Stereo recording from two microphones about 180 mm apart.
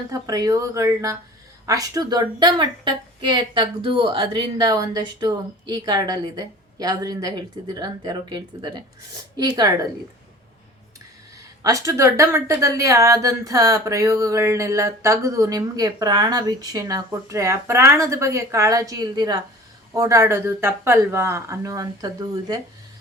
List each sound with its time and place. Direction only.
0.1 s a woman's voice: 20° right (ahead or behind)
11.6 s speech: 20° right (ahead or behind)